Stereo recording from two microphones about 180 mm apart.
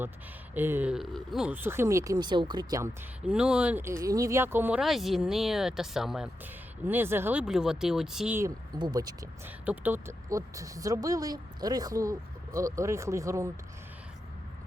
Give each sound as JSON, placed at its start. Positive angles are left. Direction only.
{"t": 0.5, "sound": "speech", "side_deg": -10}
{"t": 3.2, "sound": "speech", "side_deg": -5}
{"t": 8.4, "sound": "speech", "side_deg": -20}